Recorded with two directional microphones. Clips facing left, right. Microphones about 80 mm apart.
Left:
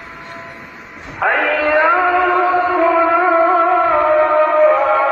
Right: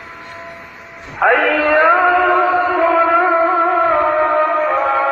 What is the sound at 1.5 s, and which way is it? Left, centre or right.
Music, right.